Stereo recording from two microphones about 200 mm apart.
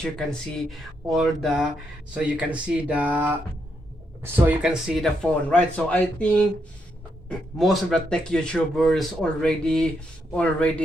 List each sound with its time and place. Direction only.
0.0 s a man's voice: 5° left (ahead or behind)